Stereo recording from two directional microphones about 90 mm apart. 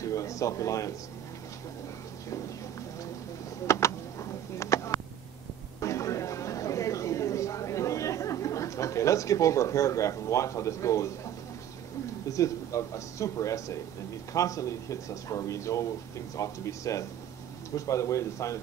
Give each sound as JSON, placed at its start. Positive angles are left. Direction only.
{"t": 0.0, "sound": "speech", "side_deg": 35}
{"t": 3.6, "sound": "a sound", "side_deg": 35}
{"t": 12.3, "sound": "speech", "side_deg": 35}